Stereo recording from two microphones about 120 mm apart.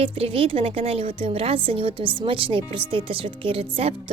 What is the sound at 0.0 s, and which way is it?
A woman's voice, 50° right (ahead or behind).